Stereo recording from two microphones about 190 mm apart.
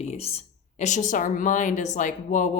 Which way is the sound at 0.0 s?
35° left (ahead or behind).